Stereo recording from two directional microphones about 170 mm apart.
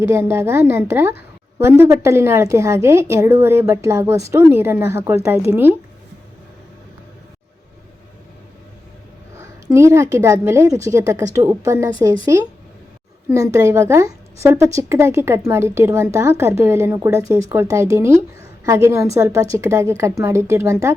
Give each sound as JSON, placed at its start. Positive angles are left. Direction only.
{"t": 0.1, "sound": "a woman's voice", "side_deg": -15}
{"t": 9.6, "sound": "a woman's voice", "side_deg": -15}